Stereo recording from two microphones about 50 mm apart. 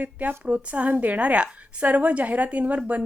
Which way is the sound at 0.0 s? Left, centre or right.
Right.